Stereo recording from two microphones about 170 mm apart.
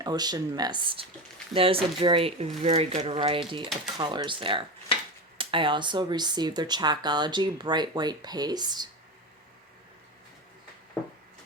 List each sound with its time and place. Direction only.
0.0 s speech: 25° right (ahead or behind)
4.9 s a sound: 30° left (ahead or behind)
5.4 s speech: 30° right (ahead or behind)